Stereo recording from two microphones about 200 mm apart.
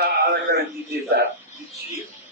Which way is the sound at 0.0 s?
50° right (ahead or behind).